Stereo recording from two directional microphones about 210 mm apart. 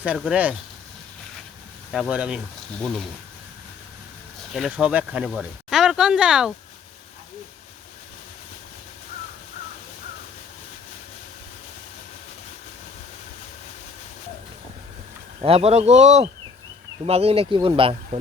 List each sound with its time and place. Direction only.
0.0 s speech: 5° right (ahead or behind)
1.9 s speech: 5° right (ahead or behind)
4.5 s speech: 5° right (ahead or behind)
15.4 s speech: 30° right (ahead or behind)